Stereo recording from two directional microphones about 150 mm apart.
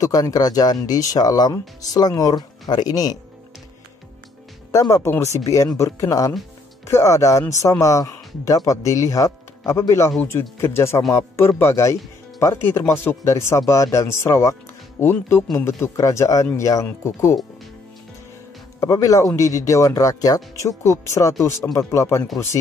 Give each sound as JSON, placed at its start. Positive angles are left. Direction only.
{"t": 0.0, "sound": "speech", "side_deg": 25}
{"t": 4.6, "sound": "speech", "side_deg": 20}
{"t": 18.8, "sound": "speech", "side_deg": 20}